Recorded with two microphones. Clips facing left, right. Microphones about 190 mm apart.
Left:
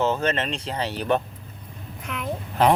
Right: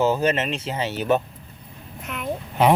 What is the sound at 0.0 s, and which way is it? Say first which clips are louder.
A child's voice: right 3 dB; 10° right (ahead or behind).